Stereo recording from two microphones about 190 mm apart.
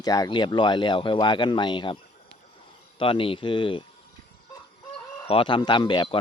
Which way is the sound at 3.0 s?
25° left (ahead or behind).